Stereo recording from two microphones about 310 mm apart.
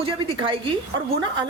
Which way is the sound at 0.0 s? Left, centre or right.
Centre.